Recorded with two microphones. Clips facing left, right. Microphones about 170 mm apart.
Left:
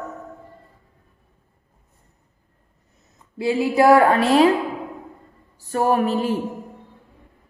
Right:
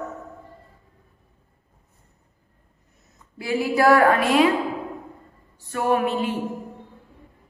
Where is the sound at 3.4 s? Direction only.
25° left (ahead or behind).